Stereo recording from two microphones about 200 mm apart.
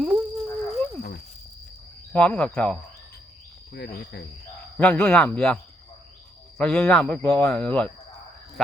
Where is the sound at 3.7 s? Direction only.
50° left (ahead or behind).